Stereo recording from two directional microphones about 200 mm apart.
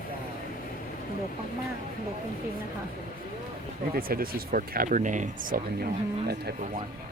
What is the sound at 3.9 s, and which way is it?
Speech, 45° right (ahead or behind).